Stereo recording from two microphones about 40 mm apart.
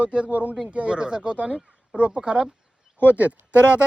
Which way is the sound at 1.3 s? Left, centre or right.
Right.